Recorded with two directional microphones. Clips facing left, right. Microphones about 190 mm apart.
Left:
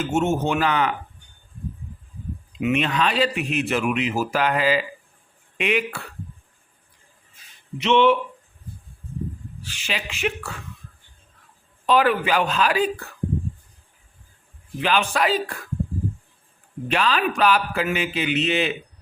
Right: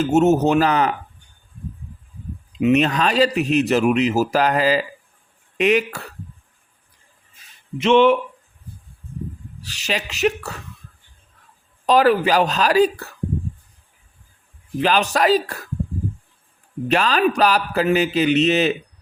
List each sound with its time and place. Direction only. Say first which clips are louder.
0.0 s speech: right 7 dB; 40° right (ahead or behind)
2.6 s speech: right 5 dB; 35° right (ahead or behind)
7.8 s speech: right 3 dB; 50° right (ahead or behind)
9.6 s speech: right 5 dB; 40° right (ahead or behind)
11.9 s speech: right 4 dB; 40° right (ahead or behind)
14.8 s speech: right 4 dB; 40° right (ahead or behind)
16.9 s speech: right 4 dB; 40° right (ahead or behind)